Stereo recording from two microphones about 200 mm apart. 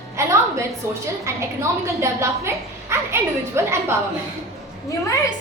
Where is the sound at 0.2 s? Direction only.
15° right (ahead or behind).